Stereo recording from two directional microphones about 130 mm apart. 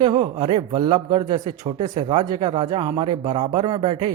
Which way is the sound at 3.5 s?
35° right (ahead or behind).